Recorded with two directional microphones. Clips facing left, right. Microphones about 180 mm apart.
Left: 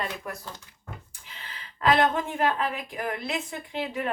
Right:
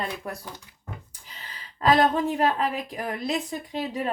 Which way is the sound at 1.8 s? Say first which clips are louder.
Right 2 dB; 35° right (ahead or behind).